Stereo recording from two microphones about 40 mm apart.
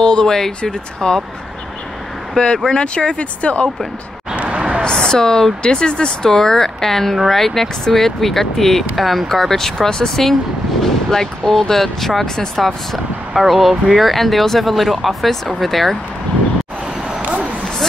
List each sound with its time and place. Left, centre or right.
0.0 s speech: centre
2.3 s speech: centre
4.8 s a woman's voice: centre
13.3 s speech: centre
17.2 s a sound: right